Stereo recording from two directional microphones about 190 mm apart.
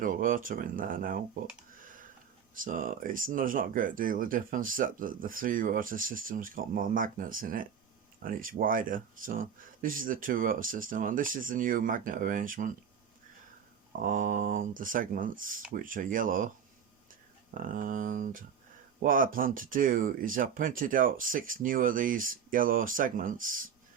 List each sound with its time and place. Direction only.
0.0 s speech: 45° right (ahead or behind)
2.6 s speech: 45° right (ahead or behind)
14.0 s speech: 45° right (ahead or behind)
17.5 s speech: 45° right (ahead or behind)